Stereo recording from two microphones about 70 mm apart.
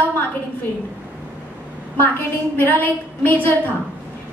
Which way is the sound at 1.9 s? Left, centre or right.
Left.